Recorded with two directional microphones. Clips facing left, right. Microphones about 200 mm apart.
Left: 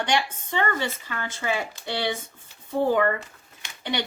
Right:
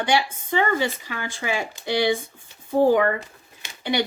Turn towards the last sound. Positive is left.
turn(degrees=-10)  # may be behind; listen again after turning